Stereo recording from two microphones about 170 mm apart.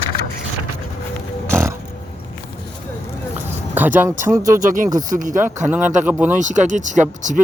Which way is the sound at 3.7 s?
10° right (ahead or behind).